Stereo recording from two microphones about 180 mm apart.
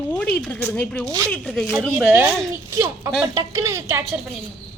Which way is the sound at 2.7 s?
15° right (ahead or behind).